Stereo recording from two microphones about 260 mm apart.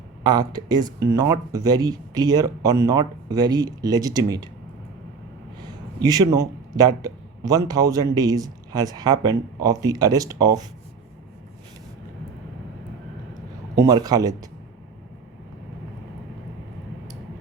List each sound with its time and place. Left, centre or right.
0.2 s a man's voice: centre
6.0 s a man's voice: centre
13.7 s a man's voice: centre